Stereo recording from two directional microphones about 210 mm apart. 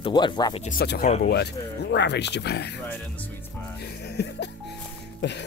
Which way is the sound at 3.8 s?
50° left (ahead or behind).